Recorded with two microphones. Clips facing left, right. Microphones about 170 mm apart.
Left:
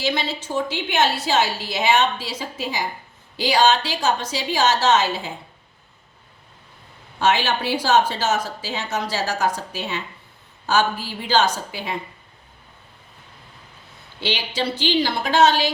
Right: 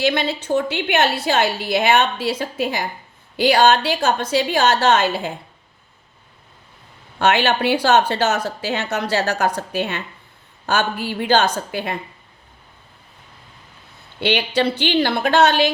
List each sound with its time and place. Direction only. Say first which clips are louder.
0.0 s a woman's voice: right 5 dB; 60° right (ahead or behind)
7.2 s a woman's voice: right 3 dB; 65° right (ahead or behind)
14.2 s a woman's voice: right 6 dB; 60° right (ahead or behind)